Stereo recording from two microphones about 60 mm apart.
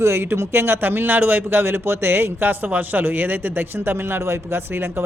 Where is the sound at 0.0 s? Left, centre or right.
Right.